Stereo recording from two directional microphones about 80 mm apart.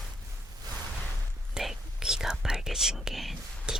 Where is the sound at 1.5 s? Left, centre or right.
Centre.